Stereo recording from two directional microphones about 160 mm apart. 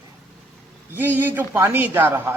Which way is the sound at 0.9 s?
10° right (ahead or behind).